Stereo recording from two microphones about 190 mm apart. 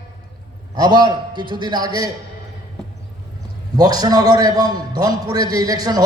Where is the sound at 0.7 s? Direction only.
20° right (ahead or behind).